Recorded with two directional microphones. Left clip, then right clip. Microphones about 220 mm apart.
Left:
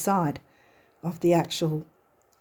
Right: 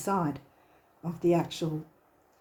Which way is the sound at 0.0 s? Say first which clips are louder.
Left 5 dB; 50° left (ahead or behind).